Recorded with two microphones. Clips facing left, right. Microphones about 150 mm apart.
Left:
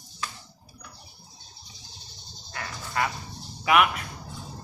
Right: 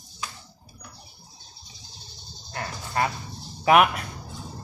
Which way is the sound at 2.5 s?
30° right (ahead or behind).